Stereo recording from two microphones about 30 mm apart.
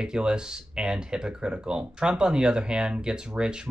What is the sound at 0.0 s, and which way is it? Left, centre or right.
Speech, right.